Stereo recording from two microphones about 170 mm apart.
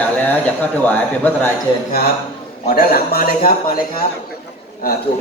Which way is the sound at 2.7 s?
60° left (ahead or behind).